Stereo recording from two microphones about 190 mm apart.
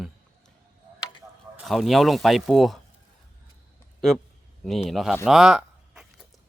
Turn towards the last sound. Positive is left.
turn(degrees=-5)  # may be behind; listen again after turning